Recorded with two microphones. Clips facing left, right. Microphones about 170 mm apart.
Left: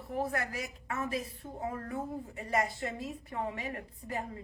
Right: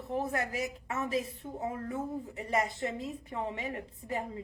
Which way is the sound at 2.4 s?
20° right (ahead or behind).